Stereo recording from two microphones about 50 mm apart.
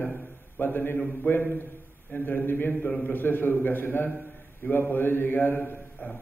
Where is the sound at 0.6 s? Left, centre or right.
Left.